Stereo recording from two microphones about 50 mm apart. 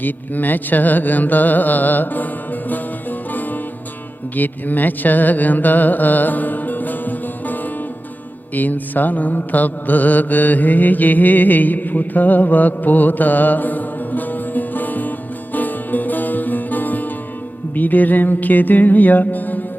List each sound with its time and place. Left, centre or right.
0.0 s carnatic music: left
4.4 s music: left
8.5 s mantra: left
15.5 s music: left